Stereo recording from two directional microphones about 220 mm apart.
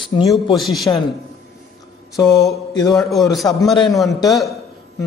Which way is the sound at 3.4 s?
10° left (ahead or behind).